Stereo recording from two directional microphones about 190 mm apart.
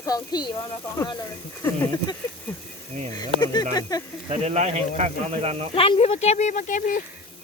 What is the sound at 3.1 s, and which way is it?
Insect, 20° left (ahead or behind).